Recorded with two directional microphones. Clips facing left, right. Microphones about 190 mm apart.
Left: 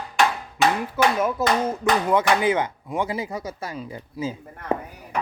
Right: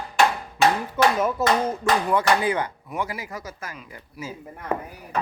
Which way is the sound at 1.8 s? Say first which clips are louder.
Left 2 dB; 20° left (ahead or behind).